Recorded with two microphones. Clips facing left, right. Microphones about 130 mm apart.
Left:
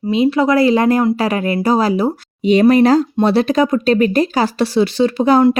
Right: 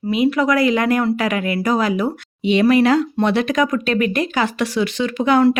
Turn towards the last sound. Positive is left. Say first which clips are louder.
# left 4 dB
turn(degrees=35)  # may be behind; listen again after turning